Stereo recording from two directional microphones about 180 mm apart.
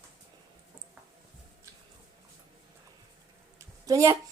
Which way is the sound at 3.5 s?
15° right (ahead or behind).